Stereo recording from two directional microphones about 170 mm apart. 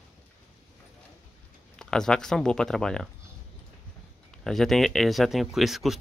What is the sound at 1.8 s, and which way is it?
Speech, 5° left (ahead or behind).